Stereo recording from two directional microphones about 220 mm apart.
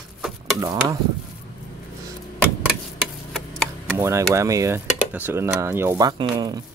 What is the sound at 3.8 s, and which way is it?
Speech, 10° right (ahead or behind).